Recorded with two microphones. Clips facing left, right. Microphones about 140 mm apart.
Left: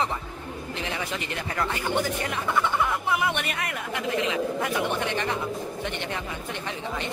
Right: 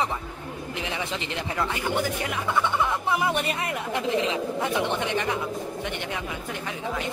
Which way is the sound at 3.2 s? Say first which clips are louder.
Right 2 dB; 30° right (ahead or behind).